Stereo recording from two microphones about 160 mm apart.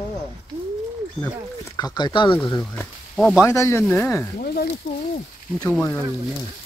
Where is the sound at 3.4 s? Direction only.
20° left (ahead or behind).